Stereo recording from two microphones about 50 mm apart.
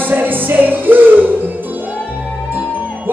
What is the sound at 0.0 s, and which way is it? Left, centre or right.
Music, right.